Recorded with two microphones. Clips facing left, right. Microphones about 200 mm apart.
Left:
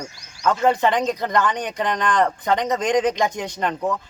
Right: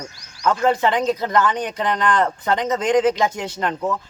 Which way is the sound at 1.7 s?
15° left (ahead or behind).